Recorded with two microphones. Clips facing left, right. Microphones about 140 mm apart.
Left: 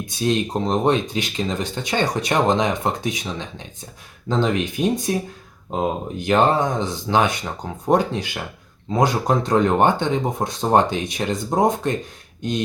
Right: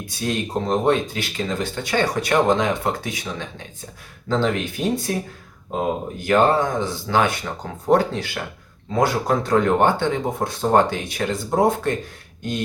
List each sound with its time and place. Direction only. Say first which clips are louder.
0.0 s speech: left 4 dB; 20° left (ahead or behind)
6.1 s speech: even; 20° left (ahead or behind)